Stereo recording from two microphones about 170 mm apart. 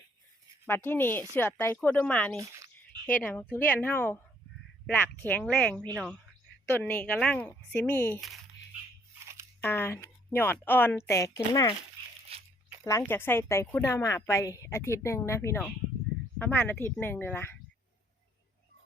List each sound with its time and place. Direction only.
0.7 s a woman's voice: 15° left (ahead or behind)
2.3 s a sound: 20° right (ahead or behind)
3.1 s a woman's voice: 10° left (ahead or behind)
9.2 s crunch: 15° right (ahead or behind)
9.6 s a woman's voice: 15° left (ahead or behind)
12.3 s crunch: 35° right (ahead or behind)
12.8 s a woman's voice: 15° left (ahead or behind)